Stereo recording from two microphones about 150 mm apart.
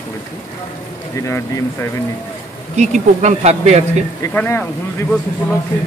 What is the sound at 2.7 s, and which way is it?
A man's voice, 50° right (ahead or behind).